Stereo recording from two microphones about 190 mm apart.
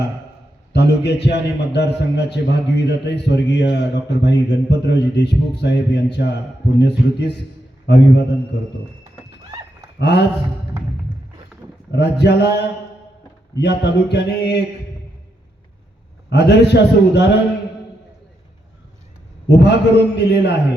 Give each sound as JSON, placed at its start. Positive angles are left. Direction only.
{"t": 0.7, "sound": "speech", "side_deg": 60}
{"t": 10.0, "sound": "speech", "side_deg": 60}
{"t": 11.9, "sound": "speech", "side_deg": 60}
{"t": 16.3, "sound": "speech", "side_deg": 60}
{"t": 19.5, "sound": "speech", "side_deg": 60}